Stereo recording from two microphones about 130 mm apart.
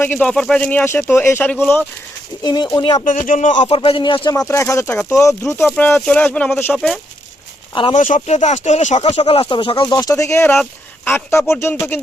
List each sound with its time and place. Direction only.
0.0 s speech: 10° left (ahead or behind)
2.4 s speech: 35° left (ahead or behind)
3.0 s a man's voice: 85° left
3.7 s speech: 40° left (ahead or behind)
4.4 s speech: 20° left (ahead or behind)
5.7 s speech: 10° left (ahead or behind)
6.7 s speech: 5° left (ahead or behind)
7.9 s speech: 75° left (ahead or behind); by 9.2 s 60° left (ahead or behind)
9.2 s speech: 40° left (ahead or behind); by 11.5 s 20° left (ahead or behind)
11.5 s speech: 10° left (ahead or behind)